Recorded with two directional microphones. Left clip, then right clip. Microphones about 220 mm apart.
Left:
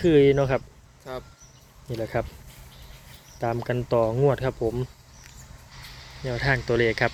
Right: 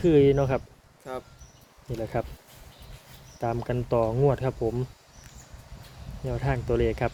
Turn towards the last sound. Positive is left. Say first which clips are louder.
# left 4 dB
turn(degrees=0)  # may be behind; listen again after turning